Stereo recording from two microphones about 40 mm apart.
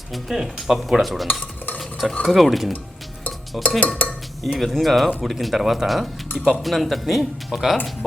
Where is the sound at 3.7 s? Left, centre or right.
Left.